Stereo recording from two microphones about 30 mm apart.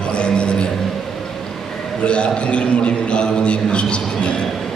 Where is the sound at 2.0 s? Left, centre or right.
Left.